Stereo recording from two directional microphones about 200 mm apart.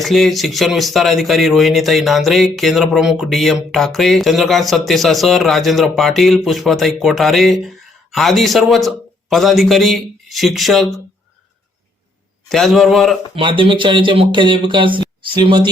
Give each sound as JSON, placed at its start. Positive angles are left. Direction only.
{"t": 0.0, "sound": "speech", "side_deg": 0}
{"t": 12.5, "sound": "speech", "side_deg": 0}
{"t": 13.3, "sound": "speech", "side_deg": -25}